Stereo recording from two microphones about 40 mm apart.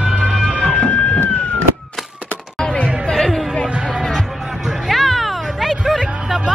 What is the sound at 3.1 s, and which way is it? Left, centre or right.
Music, centre.